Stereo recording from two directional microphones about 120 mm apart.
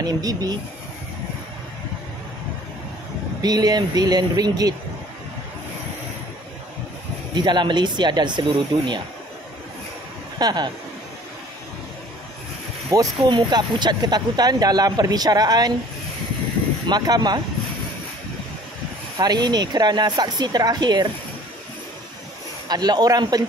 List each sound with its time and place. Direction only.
0.0 s speech: 30° right (ahead or behind)
3.4 s speech: 35° right (ahead or behind)
7.3 s speech: 40° right (ahead or behind)
10.4 s speech: 35° right (ahead or behind)
12.9 s speech: 30° right (ahead or behind)
16.8 s speech: 35° right (ahead or behind)
19.1 s speech: 35° right (ahead or behind)
22.7 s speech: 35° right (ahead or behind)